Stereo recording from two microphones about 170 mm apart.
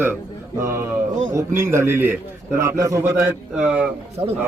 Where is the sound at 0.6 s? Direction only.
15° right (ahead or behind).